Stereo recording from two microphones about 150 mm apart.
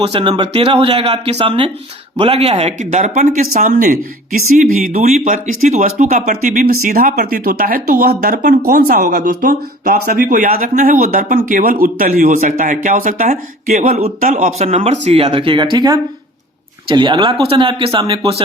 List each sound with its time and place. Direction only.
0.0 s speech: 35° right (ahead or behind); by 14.5 s 60° right (ahead or behind)
14.6 s speech: 45° right (ahead or behind)